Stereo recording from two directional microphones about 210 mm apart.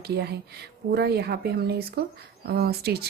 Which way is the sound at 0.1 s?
50° right (ahead or behind).